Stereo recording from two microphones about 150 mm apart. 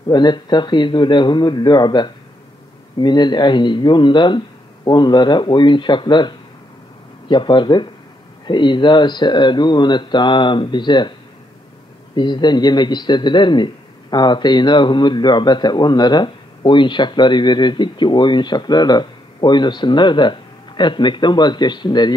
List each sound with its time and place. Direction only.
0.1 s a man's voice: 30° left (ahead or behind)
12.2 s a man's voice: 30° left (ahead or behind)